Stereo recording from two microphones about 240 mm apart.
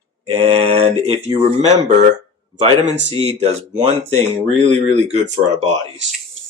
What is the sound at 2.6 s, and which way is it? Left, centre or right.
Speech, right.